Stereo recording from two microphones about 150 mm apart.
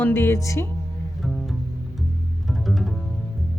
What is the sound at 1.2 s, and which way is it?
Music, centre (ahead or behind).